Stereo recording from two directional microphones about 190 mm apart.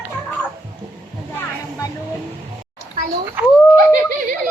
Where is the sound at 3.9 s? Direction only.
45° right (ahead or behind).